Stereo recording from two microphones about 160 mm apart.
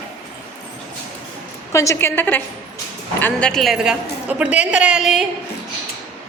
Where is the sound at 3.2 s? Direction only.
5° left (ahead or behind).